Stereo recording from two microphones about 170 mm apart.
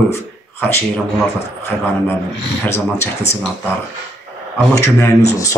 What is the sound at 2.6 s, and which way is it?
Speech, 15° left (ahead or behind).